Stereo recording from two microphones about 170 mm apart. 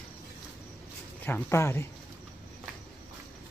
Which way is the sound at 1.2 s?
15° left (ahead or behind).